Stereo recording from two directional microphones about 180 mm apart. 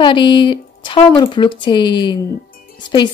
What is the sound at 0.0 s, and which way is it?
Speech, 25° left (ahead or behind).